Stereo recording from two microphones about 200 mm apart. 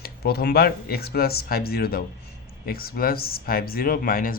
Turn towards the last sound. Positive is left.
turn(degrees=45)  # may be behind; listen again after turning